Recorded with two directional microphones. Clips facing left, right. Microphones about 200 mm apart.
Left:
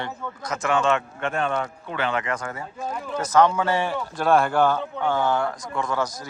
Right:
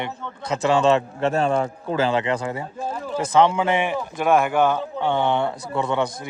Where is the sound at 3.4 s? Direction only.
20° right (ahead or behind).